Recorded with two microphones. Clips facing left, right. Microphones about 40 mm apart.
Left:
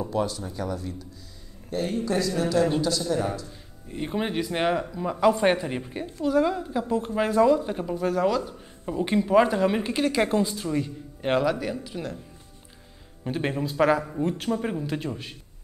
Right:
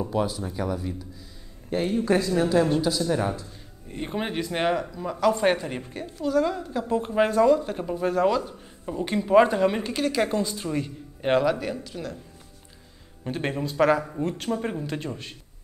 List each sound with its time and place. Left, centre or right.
0.1 s speech: centre
1.7 s speech: right
2.8 s speech: centre
3.1 s speech: right
3.9 s speech: centre
4.9 s speech: centre
6.9 s speech: centre
7.3 s speech: centre
8.8 s speech: centre
9.2 s speech: centre
9.8 s speech: centre
10.6 s speech: centre
11.8 s speech: centre
13.2 s speech: centre